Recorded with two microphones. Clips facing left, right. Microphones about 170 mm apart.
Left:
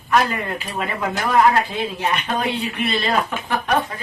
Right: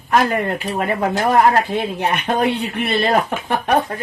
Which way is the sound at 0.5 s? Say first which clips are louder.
Right 5 dB; 45° right (ahead or behind).